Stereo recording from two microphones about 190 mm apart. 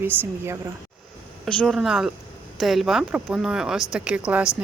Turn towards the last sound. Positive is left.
turn(degrees=-5)  # may be behind; listen again after turning